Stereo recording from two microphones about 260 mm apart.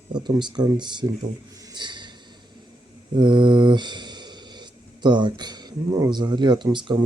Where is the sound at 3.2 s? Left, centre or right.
Centre.